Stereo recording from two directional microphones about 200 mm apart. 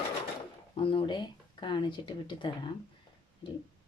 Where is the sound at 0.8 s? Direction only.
25° left (ahead or behind).